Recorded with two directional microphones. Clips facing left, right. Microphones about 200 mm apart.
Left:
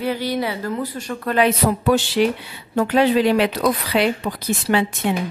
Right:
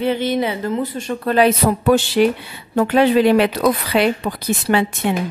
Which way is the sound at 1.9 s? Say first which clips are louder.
Right 3 dB; 50° right (ahead or behind).